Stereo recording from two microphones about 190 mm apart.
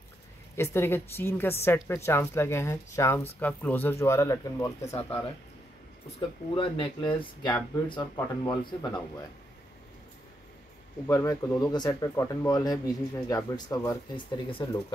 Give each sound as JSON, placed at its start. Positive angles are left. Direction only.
{"t": 0.6, "sound": "a woman's voice", "side_deg": 10}
{"t": 6.5, "sound": "speech", "side_deg": 25}
{"t": 11.1, "sound": "speech", "side_deg": 15}